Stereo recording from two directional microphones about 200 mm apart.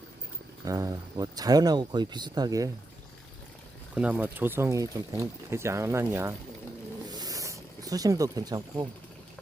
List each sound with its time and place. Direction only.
0.6 s speech: 15° right (ahead or behind)
3.9 s speech: 5° right (ahead or behind)
7.1 s snake: 20° right (ahead or behind)